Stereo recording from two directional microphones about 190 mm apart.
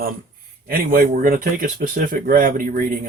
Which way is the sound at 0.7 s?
45° right (ahead or behind).